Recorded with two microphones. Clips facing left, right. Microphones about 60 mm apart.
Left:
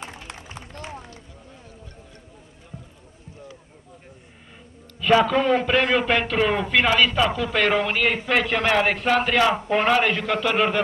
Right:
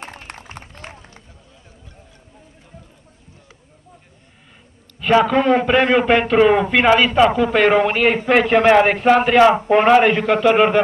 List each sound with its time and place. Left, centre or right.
0.0 s run: right
5.3 s a man's voice: right